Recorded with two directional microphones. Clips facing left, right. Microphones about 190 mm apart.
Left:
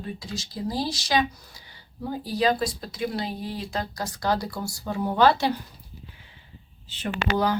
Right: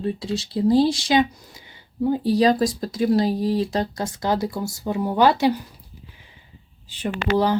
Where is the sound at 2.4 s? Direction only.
40° right (ahead or behind); by 5.5 s 15° right (ahead or behind).